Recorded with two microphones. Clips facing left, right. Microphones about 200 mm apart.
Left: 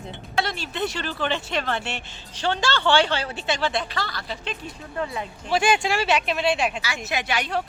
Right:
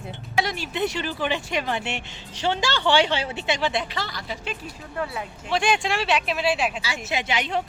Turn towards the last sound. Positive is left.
turn(degrees=-20)  # may be behind; listen again after turning